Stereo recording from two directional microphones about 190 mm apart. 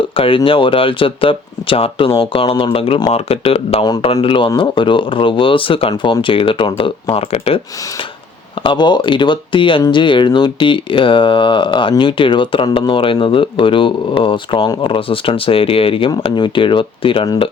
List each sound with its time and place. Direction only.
0.2 s speech: 25° left (ahead or behind)
8.6 s speech: 25° left (ahead or behind)